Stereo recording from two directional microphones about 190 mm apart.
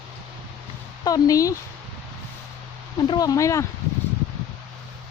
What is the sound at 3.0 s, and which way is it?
Speech, 20° left (ahead or behind).